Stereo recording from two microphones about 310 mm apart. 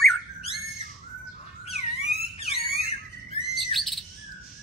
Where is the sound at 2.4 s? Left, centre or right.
Centre.